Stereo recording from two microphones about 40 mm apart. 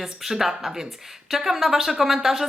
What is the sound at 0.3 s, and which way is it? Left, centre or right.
Speech, centre.